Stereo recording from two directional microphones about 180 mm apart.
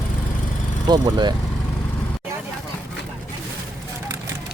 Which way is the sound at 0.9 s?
25° right (ahead or behind).